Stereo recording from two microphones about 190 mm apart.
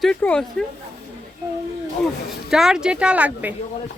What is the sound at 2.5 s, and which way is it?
A woman's voice, 5° right (ahead or behind).